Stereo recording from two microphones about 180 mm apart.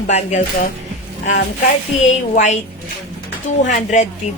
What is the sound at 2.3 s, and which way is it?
Speech, 40° left (ahead or behind).